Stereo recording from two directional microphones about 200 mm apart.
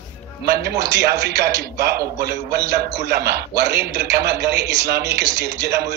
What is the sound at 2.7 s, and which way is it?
A man's voice, 50° right (ahead or behind).